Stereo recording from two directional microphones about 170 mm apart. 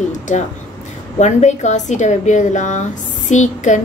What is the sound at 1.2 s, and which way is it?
A woman's voice, 45° left (ahead or behind).